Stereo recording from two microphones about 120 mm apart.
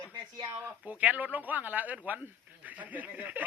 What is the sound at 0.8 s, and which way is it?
Speech, 15° right (ahead or behind).